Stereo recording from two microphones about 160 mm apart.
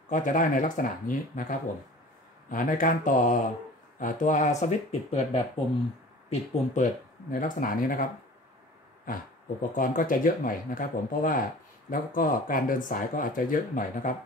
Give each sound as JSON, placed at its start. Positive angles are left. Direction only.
{"t": 0.1, "sound": "speech", "side_deg": 55}